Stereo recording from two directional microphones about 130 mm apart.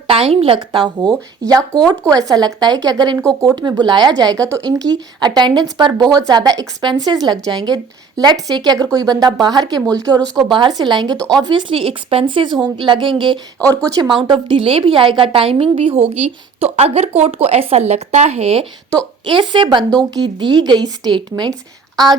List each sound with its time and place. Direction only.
0.1 s a woman's voice: 45° right (ahead or behind)
1.9 s speech: 25° right (ahead or behind)
11.2 s speech: 5° left (ahead or behind)
11.4 s a woman's voice: 40° right (ahead or behind)
19.2 s speech: 40° right (ahead or behind)